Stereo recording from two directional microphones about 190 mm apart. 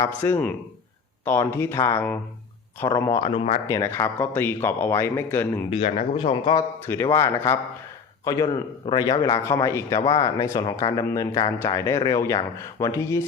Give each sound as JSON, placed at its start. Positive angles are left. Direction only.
{"t": 0.0, "sound": "a man's voice", "side_deg": 10}
{"t": 5.7, "sound": "a man's voice", "side_deg": 35}